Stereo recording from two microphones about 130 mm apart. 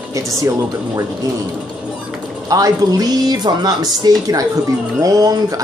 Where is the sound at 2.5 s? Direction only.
30° right (ahead or behind).